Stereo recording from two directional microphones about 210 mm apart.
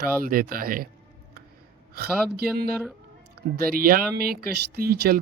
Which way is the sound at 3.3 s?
45° right (ahead or behind).